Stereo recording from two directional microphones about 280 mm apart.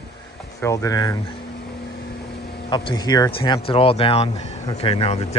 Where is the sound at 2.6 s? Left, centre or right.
Centre.